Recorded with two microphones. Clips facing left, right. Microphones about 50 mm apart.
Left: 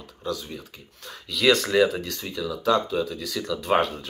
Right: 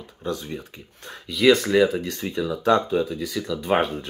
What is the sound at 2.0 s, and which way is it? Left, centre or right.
Speech, right.